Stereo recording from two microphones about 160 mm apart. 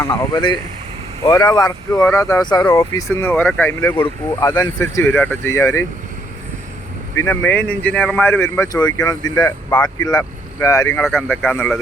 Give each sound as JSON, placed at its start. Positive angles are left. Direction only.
{"t": 0.0, "sound": "speech", "side_deg": 15}
{"t": 7.2, "sound": "speech", "side_deg": 15}
{"t": 11.0, "sound": "speech", "side_deg": 0}